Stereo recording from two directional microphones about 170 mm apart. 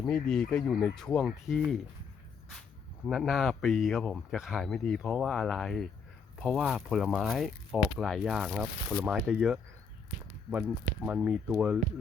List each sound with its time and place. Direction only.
0.0 s speech: 5° left (ahead or behind)
3.1 s speech: centre (ahead or behind)